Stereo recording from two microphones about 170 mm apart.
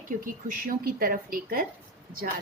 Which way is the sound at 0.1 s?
55° right (ahead or behind).